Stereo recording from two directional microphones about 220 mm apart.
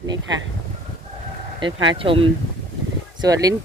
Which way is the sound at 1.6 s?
20° right (ahead or behind).